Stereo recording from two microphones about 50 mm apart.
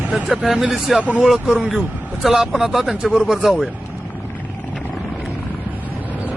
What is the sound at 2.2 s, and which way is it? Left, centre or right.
Speech, centre.